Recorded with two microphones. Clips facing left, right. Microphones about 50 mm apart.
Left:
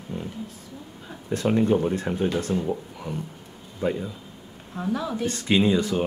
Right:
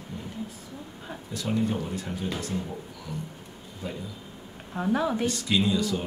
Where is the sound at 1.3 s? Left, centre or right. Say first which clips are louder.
Left 7 dB; left.